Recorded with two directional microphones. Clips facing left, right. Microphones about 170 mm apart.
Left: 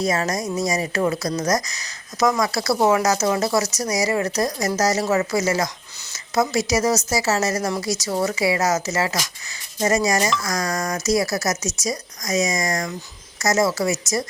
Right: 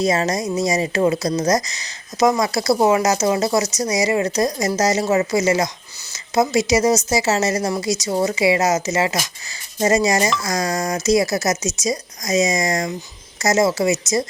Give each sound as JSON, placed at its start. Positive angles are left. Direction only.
{"t": 0.0, "sound": "speech", "side_deg": -25}